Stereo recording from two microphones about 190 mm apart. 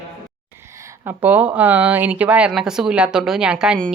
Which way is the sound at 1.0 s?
10° right (ahead or behind).